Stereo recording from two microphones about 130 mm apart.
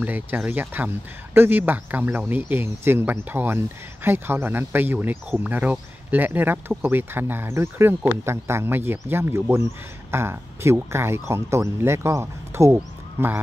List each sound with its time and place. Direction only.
0.0 s speech: 10° right (ahead or behind)